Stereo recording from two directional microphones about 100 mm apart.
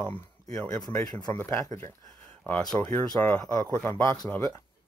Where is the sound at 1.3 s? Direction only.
25° left (ahead or behind).